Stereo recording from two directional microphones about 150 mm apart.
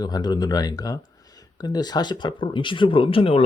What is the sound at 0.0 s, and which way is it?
Speech, 25° left (ahead or behind).